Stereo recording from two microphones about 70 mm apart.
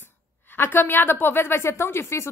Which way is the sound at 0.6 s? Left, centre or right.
Left.